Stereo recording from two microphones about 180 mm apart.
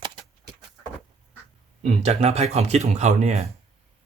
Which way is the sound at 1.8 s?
40° right (ahead or behind).